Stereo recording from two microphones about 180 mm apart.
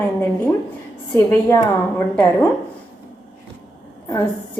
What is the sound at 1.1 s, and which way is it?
Speech, 15° left (ahead or behind).